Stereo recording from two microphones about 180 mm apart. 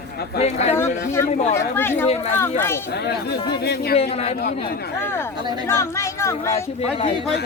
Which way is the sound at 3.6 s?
65° left (ahead or behind).